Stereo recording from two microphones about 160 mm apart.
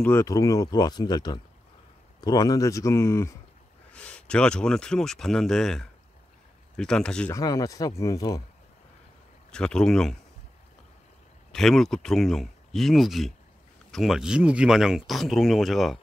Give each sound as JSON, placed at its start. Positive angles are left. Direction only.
{"t": 0.0, "sound": "speech", "side_deg": 15}
{"t": 7.3, "sound": "speech", "side_deg": 20}
{"t": 9.5, "sound": "speech", "side_deg": 5}
{"t": 11.5, "sound": "speech", "side_deg": 0}